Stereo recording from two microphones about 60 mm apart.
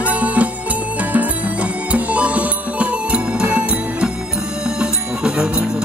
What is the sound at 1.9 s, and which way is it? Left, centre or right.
Music, right.